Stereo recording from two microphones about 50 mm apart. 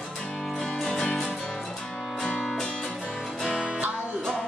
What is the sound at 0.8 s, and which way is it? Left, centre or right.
Music, centre.